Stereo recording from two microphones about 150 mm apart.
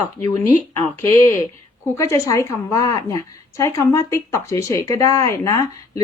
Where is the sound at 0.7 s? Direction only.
15° left (ahead or behind).